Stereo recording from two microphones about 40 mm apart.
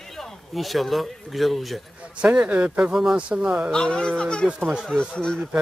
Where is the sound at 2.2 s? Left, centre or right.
Right.